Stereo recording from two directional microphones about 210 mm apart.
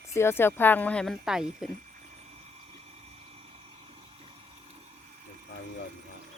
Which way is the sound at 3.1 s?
30° right (ahead or behind).